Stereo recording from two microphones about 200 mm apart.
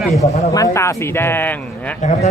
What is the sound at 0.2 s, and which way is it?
A man's voice, 15° left (ahead or behind).